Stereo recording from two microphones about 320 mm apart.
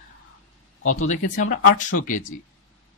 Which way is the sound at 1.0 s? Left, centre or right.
Left.